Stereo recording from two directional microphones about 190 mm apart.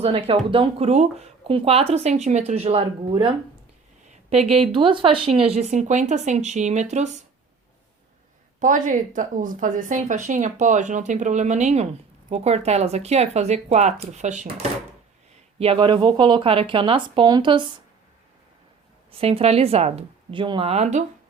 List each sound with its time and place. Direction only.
0.0 s a woman's voice: 30° right (ahead or behind)
8.5 s a woman's voice: 45° right (ahead or behind)
15.5 s speech: 30° right (ahead or behind)
19.1 s a woman's voice: 30° right (ahead or behind)